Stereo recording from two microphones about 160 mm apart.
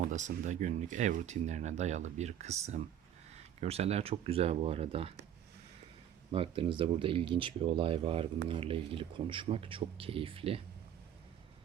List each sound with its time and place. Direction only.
0.1 s speech: 50° right (ahead or behind)
6.3 s speech: 35° right (ahead or behind)